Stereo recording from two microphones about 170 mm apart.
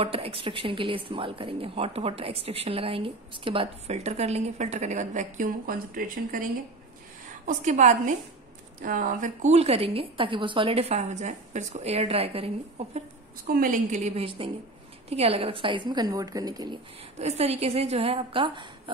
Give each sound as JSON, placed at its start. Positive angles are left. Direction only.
{"t": 0.0, "sound": "speech", "side_deg": -35}
{"t": 7.4, "sound": "a woman's voice", "side_deg": -45}
{"t": 13.5, "sound": "a woman's voice", "side_deg": -55}
{"t": 17.2, "sound": "speech", "side_deg": -40}